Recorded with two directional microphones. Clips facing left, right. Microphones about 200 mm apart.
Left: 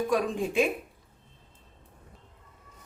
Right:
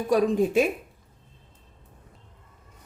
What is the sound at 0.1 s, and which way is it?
Speech, 40° right (ahead or behind).